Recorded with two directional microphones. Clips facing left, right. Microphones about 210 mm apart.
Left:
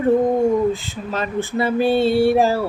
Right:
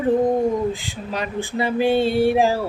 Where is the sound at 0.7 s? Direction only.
15° right (ahead or behind).